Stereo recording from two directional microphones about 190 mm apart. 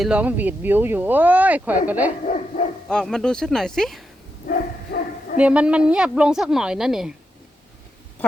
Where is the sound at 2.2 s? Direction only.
40° left (ahead or behind).